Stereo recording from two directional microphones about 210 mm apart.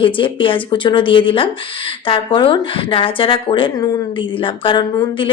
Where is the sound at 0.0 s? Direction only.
25° left (ahead or behind).